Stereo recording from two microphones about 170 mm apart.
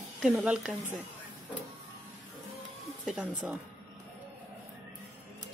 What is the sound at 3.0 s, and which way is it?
Speech, 5° right (ahead or behind).